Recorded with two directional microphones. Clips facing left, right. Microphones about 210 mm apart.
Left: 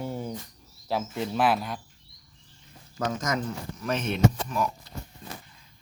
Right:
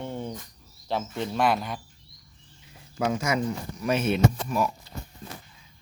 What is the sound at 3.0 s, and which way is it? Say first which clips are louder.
Speech: right 3 dB; 10° right (ahead or behind).